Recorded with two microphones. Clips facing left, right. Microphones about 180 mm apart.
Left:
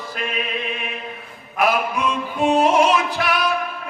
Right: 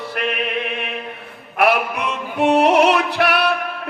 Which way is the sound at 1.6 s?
65° right (ahead or behind).